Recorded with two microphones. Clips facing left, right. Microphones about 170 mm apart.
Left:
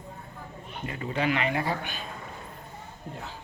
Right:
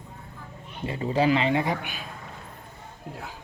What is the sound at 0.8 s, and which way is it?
Speech, 30° right (ahead or behind).